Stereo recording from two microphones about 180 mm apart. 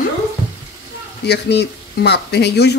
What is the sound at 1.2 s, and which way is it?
Speech, 70° left (ahead or behind).